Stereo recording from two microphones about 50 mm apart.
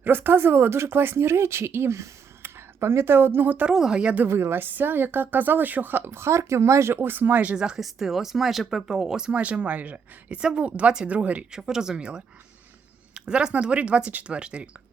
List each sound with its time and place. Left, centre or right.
0.0 s speech: right
3.7 s speech: centre
4.3 s a woman's voice: right
6.1 s speech: right
7.0 s a woman's voice: right
7.5 s speech: centre
7.8 s speech: centre
9.3 s speech: right
11.5 s speech: centre
13.1 s a sound: centre
13.5 s speech: right